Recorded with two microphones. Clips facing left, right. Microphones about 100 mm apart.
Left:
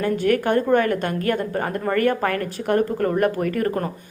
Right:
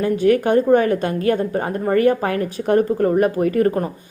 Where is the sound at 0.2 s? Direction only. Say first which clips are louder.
Right 6 dB; 15° right (ahead or behind).